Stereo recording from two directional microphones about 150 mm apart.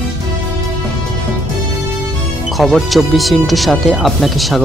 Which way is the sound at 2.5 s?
Centre (ahead or behind).